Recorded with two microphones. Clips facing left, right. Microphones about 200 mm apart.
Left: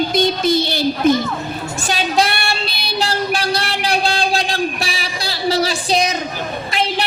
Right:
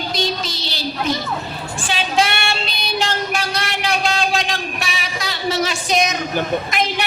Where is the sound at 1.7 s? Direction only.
40° left (ahead or behind).